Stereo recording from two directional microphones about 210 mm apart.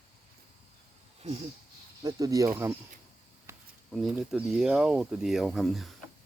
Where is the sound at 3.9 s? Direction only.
Centre (ahead or behind).